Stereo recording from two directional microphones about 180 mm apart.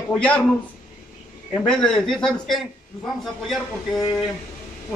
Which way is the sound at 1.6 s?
5° left (ahead or behind).